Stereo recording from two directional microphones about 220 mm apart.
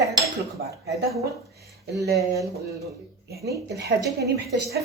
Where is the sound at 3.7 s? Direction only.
50° right (ahead or behind).